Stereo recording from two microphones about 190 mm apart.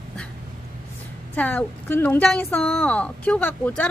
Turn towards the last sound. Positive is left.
turn(degrees=10)  # may be behind; listen again after turning